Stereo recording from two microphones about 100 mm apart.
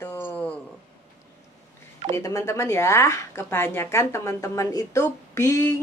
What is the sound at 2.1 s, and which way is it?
Speech, 30° left (ahead or behind).